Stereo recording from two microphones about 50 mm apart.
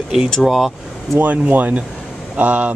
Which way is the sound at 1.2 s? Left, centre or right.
Right.